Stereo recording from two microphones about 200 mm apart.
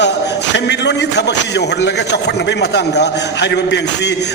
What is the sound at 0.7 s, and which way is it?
A man's voice, 60° left (ahead or behind).